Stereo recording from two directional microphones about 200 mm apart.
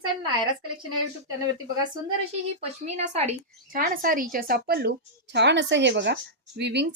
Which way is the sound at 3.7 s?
45° right (ahead or behind).